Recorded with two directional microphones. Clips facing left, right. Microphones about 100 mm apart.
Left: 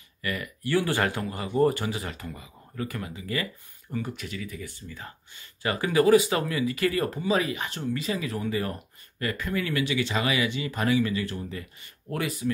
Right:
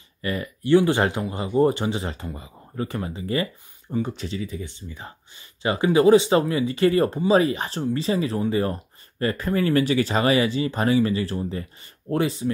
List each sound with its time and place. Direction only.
0.2 s speech: 30° right (ahead or behind)